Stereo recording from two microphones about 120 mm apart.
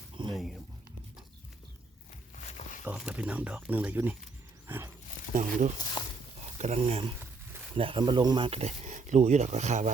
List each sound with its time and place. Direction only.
0.2 s a sound: 40° right (ahead or behind)
2.3 s a sound: 85° left
3.0 s speech: 10° right (ahead or behind)
4.6 s wild animals: 20° right (ahead or behind)
5.3 s speech: 90° right
6.0 s speech: 35° left (ahead or behind)
6.6 s speech: 65° right (ahead or behind)
7.8 s speech: 45° right (ahead or behind)
8.4 s speech: 65° right (ahead or behind)